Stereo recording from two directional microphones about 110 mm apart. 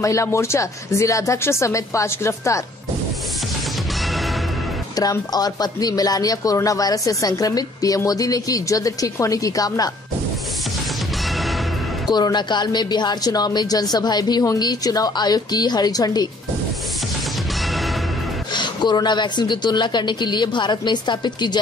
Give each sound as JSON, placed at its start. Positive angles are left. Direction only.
{"t": 0.0, "sound": "speech", "side_deg": 30}
{"t": 5.3, "sound": "speech", "side_deg": 35}
{"t": 12.1, "sound": "speech", "side_deg": 40}
{"t": 18.5, "sound": "a woman's voice", "side_deg": 40}